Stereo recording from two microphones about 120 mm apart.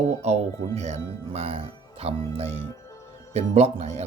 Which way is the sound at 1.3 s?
55° right (ahead or behind).